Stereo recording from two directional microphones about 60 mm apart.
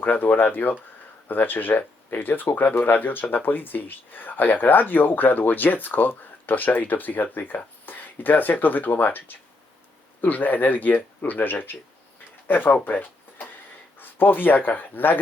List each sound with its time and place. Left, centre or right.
0.0 s speech: left
12.8 s a sound: left
14.0 s speech: left